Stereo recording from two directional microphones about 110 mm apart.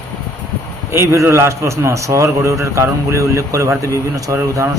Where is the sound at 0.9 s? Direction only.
25° right (ahead or behind).